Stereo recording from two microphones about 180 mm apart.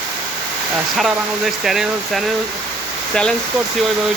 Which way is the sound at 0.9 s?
Centre (ahead or behind).